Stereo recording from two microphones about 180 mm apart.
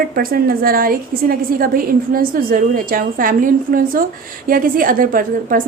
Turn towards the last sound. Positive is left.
turn(degrees=-50)  # may be behind; listen again after turning